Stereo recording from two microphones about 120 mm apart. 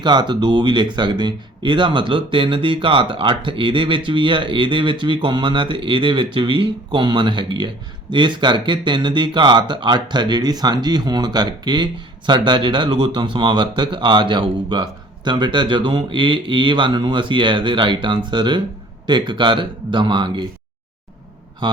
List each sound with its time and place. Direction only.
0.0 s speech: 40° right (ahead or behind)